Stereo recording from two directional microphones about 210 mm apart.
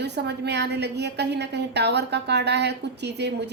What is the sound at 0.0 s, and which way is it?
A woman's voice, 55° right (ahead or behind).